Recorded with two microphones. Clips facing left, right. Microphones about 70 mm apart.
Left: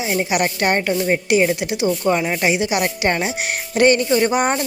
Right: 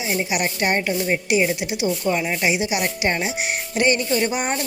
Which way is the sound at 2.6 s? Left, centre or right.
Left.